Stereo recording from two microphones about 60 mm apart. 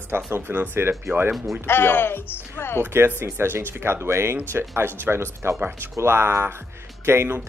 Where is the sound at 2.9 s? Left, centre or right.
Right.